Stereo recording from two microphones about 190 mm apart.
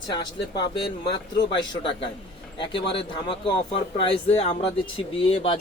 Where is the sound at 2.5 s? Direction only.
25° left (ahead or behind).